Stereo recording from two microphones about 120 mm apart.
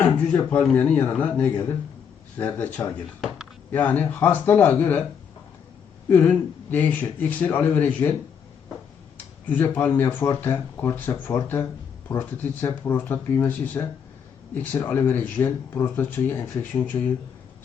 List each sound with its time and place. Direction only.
0.0 s speech: 10° left (ahead or behind)
6.1 s speech: 10° left (ahead or behind)
9.5 s speech: 15° left (ahead or behind)